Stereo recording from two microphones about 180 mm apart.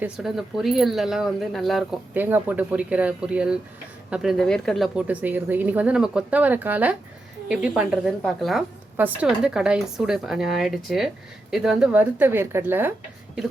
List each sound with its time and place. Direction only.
0.0 s speech: 5° right (ahead or behind)
2.1 s a woman's voice: 10° right (ahead or behind)